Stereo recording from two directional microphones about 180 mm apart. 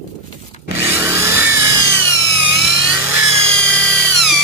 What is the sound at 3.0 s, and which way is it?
Helicopter, 10° right (ahead or behind).